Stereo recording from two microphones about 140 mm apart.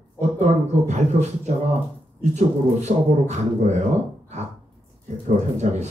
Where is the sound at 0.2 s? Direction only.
55° right (ahead or behind).